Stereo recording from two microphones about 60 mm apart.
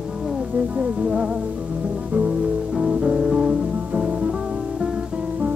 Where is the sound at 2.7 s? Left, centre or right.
Centre.